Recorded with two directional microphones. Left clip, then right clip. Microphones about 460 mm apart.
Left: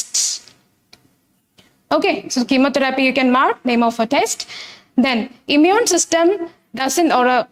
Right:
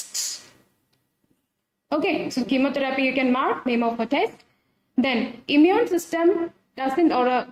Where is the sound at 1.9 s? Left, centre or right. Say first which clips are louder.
Left 7 dB; left.